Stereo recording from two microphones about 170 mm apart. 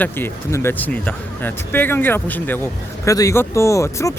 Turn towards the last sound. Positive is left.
turn(degrees=20)  # may be behind; listen again after turning